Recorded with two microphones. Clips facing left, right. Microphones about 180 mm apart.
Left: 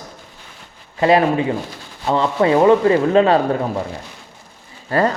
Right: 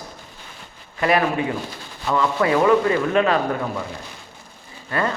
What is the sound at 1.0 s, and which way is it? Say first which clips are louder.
Speech: left 5 dB; 30° left (ahead or behind).